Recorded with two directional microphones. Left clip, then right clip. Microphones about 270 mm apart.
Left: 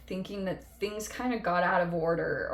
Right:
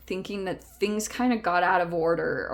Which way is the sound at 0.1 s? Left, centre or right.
Right.